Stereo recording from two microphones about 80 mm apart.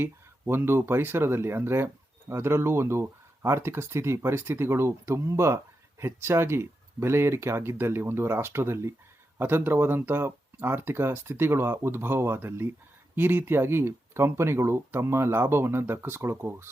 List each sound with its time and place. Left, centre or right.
0.0 s speech: right